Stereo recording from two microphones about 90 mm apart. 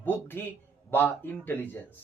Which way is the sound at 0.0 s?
25° left (ahead or behind).